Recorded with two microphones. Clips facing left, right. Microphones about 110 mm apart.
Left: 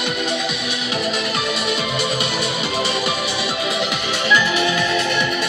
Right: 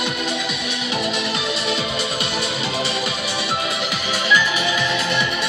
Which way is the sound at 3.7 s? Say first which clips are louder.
Left 2 dB; 5° right (ahead or behind).